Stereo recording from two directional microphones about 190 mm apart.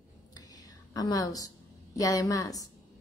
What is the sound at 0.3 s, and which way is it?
Whispering, 20° left (ahead or behind).